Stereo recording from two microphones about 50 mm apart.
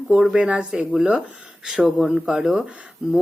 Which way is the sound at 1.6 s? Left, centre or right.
Centre.